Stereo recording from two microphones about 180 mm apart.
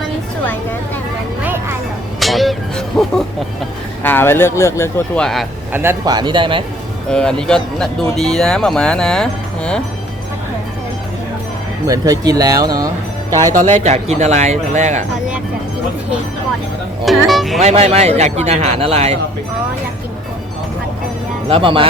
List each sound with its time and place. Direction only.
1.5 s music: 15° right (ahead or behind)
2.1 s music: centre (ahead or behind)
4.0 s speech: 10° left (ahead or behind)
5.7 s speech: 15° right (ahead or behind)
7.1 s speech: 5° left (ahead or behind)
11.9 s speech: 20° right (ahead or behind)
13.5 s speech: 45° right (ahead or behind)
17.1 s speech: centre (ahead or behind)
17.6 s speech: 35° right (ahead or behind)
21.5 s speech: 30° right (ahead or behind)